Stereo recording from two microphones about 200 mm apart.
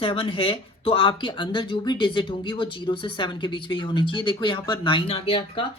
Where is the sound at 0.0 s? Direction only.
25° left (ahead or behind).